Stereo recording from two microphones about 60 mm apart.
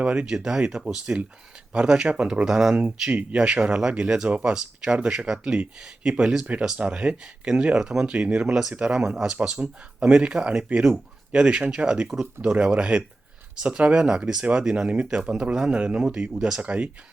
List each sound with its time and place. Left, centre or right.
0.0 s speech: centre
2.7 s speech: right